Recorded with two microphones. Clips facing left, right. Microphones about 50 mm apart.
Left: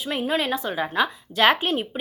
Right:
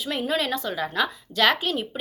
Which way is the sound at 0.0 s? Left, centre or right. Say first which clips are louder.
Left 1 dB; centre.